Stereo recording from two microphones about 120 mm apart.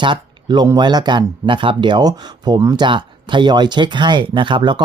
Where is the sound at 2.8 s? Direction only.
40° right (ahead or behind).